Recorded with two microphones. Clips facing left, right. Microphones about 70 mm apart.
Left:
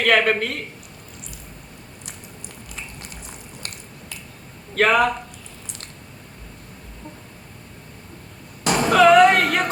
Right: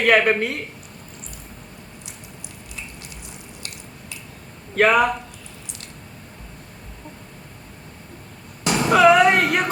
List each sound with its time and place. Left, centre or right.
0.0 s speech: centre
4.7 s speech: centre
8.6 s a sound: left
8.9 s speech: centre